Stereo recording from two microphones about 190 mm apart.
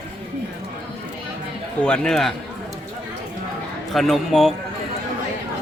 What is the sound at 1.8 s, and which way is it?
Speech, 5° left (ahead or behind).